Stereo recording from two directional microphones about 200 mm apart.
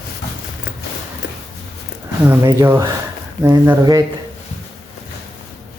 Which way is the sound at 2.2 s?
15° right (ahead or behind).